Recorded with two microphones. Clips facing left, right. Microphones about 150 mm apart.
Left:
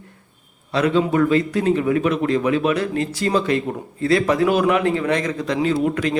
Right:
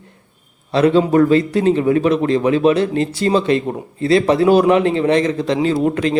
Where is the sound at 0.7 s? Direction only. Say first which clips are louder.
Right 5 dB; 30° right (ahead or behind).